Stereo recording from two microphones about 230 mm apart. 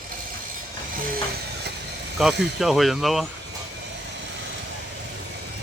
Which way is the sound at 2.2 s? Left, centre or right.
Centre.